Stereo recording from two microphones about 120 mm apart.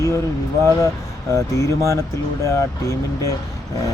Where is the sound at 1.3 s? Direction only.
25° left (ahead or behind).